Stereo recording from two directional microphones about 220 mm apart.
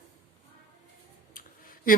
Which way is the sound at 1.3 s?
40° left (ahead or behind).